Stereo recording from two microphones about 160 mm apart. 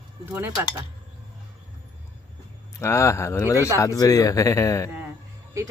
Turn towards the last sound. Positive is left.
turn(degrees=-15)  # may be behind; listen again after turning